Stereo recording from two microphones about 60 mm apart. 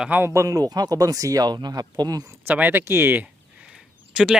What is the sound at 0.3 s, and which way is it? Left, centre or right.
Speech, right.